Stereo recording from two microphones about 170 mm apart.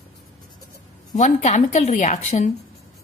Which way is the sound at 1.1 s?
45° left (ahead or behind).